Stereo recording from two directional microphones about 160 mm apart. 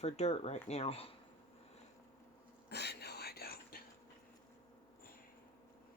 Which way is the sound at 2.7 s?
90° left.